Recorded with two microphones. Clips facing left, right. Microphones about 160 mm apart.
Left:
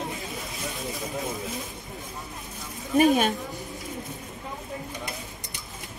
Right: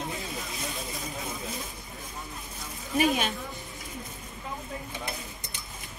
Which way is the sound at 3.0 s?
45° left (ahead or behind).